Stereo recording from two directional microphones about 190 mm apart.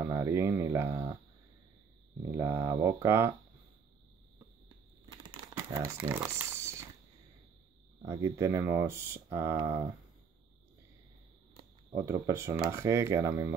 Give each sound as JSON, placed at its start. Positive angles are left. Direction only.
{"t": 0.0, "sound": "speech", "side_deg": -15}
{"t": 2.2, "sound": "speech", "side_deg": -15}
{"t": 5.1, "sound": "a sound", "side_deg": -25}
{"t": 5.6, "sound": "speech", "side_deg": -15}
{"t": 8.0, "sound": "speech", "side_deg": -15}
{"t": 11.9, "sound": "speech", "side_deg": -15}